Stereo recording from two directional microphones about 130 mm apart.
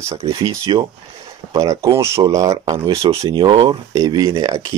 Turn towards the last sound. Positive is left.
turn(degrees=-40)  # may be behind; listen again after turning